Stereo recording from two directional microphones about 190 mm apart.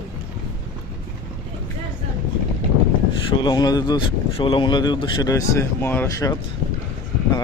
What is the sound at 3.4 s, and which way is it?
Speech, 20° left (ahead or behind).